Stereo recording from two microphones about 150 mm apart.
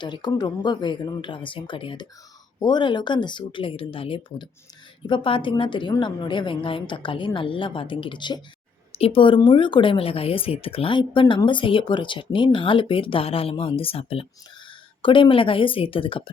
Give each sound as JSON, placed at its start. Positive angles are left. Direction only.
{"t": 0.0, "sound": "speech", "side_deg": 30}